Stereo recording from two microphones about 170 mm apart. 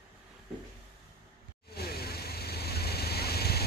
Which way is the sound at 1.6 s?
65° left (ahead or behind).